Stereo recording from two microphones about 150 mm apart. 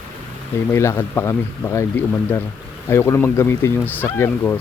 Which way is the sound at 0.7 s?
20° left (ahead or behind).